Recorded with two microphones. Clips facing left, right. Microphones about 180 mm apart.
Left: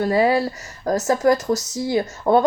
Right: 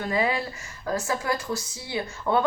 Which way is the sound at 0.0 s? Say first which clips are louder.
Left 8 dB; 40° left (ahead or behind).